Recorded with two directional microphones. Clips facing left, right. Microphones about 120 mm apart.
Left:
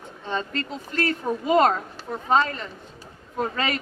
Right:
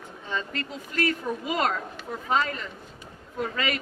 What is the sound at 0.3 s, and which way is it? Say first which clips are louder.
A woman's voice: left 4 dB; 30° left (ahead or behind).